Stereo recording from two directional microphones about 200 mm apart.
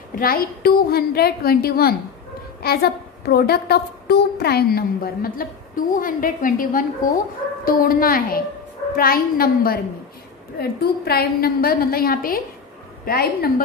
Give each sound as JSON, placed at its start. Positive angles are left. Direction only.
{"t": 0.1, "sound": "a woman's voice", "side_deg": 45}